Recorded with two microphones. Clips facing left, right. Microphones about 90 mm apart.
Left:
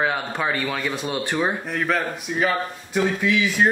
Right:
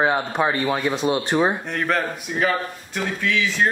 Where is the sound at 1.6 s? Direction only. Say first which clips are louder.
Even; centre (ahead or behind).